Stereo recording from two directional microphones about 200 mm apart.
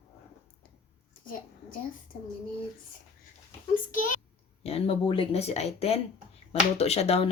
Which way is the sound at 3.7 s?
40° left (ahead or behind).